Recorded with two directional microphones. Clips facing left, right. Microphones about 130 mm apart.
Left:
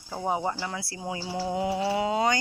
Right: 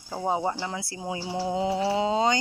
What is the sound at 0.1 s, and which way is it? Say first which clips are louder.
Speech: right 2 dB; 20° right (ahead or behind).